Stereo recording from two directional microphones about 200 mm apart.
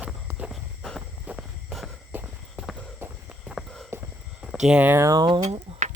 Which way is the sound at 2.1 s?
5° right (ahead or behind).